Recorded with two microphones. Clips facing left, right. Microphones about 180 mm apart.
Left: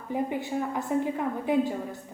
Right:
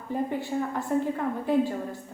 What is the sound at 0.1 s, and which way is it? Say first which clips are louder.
A woman's voice: even; 15° left (ahead or behind).